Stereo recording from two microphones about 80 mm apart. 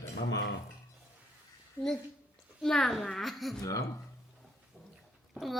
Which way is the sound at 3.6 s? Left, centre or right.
Left.